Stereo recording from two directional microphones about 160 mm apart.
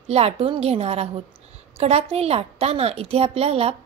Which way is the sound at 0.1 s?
40° right (ahead or behind).